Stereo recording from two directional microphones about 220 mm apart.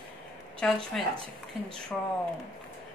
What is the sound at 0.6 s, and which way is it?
Speech, 5° left (ahead or behind).